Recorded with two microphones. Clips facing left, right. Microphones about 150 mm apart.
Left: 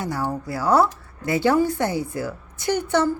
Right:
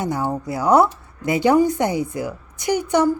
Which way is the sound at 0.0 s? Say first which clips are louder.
Right 3 dB; 20° right (ahead or behind).